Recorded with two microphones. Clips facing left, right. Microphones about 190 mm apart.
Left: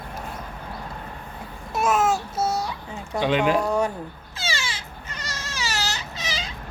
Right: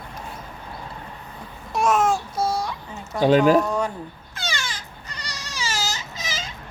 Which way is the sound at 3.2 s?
40° right (ahead or behind).